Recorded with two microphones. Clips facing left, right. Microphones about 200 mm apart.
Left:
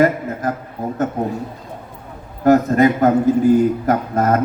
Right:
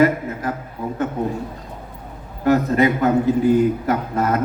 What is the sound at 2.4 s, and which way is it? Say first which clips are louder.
A man's voice: left 3 dB; 45° left (ahead or behind).